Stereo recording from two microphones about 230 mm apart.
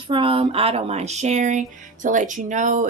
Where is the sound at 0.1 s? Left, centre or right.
Right.